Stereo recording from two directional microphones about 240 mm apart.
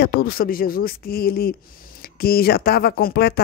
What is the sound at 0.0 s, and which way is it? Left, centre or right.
Speech, left.